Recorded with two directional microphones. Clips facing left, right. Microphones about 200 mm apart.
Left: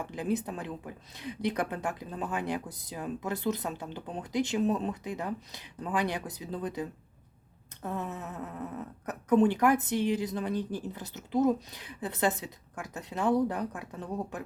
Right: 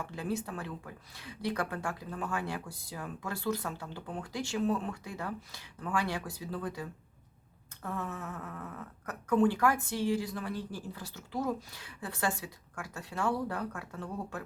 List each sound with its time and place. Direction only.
0.0 s a woman's voice: 20° left (ahead or behind)